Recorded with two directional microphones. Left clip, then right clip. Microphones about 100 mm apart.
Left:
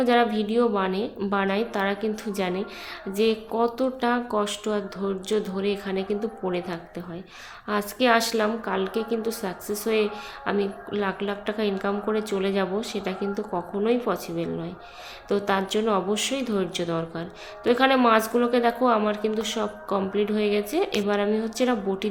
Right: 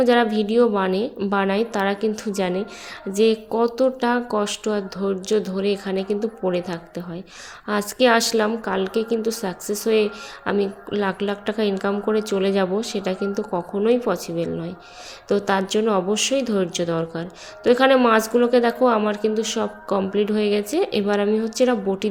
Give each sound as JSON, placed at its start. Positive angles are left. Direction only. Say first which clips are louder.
{"t": 0.0, "sound": "a woman's voice", "louder": "right 4 dB", "side_deg": -45}